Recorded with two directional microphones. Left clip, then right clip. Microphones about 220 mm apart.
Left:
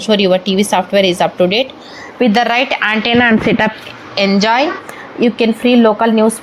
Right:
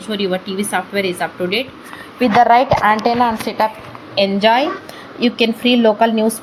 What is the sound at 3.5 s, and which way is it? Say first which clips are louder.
A woman's voice: left 4 dB; 20° left (ahead or behind).